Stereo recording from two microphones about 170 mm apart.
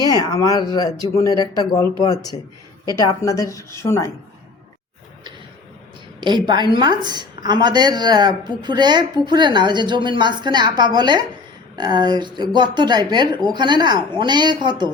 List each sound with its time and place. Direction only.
0.0 s a woman's voice: 20° left (ahead or behind)
6.1 s a woman's voice: 25° right (ahead or behind)